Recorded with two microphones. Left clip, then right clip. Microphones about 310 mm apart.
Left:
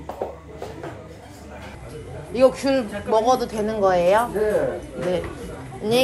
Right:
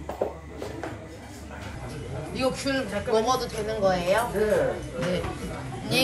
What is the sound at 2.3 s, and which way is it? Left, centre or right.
Speech, centre.